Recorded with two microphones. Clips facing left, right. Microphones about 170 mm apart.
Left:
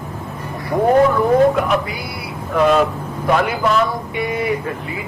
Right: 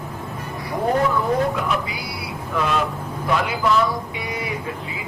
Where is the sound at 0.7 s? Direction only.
45° left (ahead or behind).